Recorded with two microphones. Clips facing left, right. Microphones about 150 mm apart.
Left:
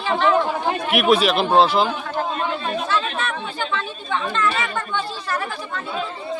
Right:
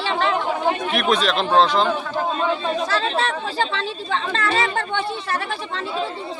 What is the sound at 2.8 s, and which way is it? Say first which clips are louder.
Speech: right 2 dB; 35° right (ahead or behind).